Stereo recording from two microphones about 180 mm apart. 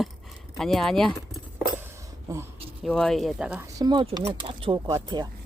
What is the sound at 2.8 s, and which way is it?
Speech, 5° left (ahead or behind).